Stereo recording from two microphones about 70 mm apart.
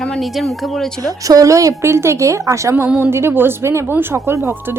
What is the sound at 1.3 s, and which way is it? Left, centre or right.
Speech, right.